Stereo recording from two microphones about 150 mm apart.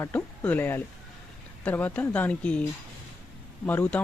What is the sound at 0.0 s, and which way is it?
Speech, 10° left (ahead or behind).